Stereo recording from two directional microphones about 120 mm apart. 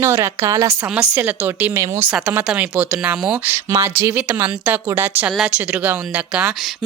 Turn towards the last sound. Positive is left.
turn(degrees=-10)  # may be behind; listen again after turning